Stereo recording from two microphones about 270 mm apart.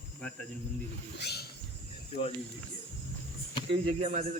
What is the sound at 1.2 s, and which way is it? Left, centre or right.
Wild animals, left.